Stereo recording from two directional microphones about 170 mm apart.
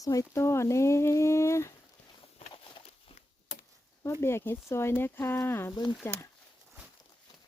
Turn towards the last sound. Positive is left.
turn(degrees=15)  # may be behind; listen again after turning